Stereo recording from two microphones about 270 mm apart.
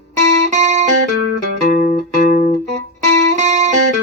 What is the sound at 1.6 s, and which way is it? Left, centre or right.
Music, left.